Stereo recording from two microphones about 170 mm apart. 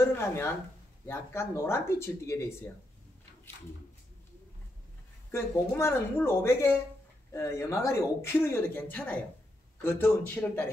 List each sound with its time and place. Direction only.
0.1 s speech: 15° left (ahead or behind)
5.3 s speech: 15° left (ahead or behind)